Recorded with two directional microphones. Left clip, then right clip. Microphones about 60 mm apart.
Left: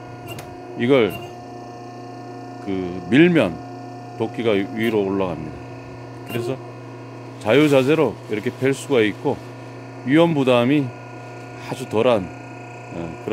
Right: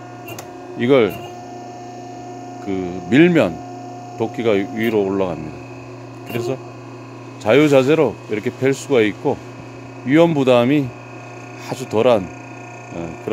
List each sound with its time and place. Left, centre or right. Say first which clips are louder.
0.7 s speech: right 2 dB; right
2.6 s speech: right 2 dB; right